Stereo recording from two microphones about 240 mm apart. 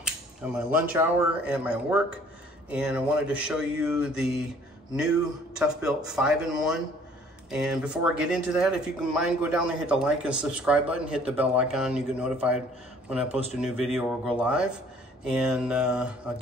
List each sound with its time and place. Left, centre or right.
0.0 s a sound: centre
0.9 s speech: centre
5.6 s speech: centre